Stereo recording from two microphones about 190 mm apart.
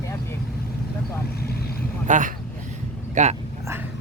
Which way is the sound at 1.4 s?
55° left (ahead or behind).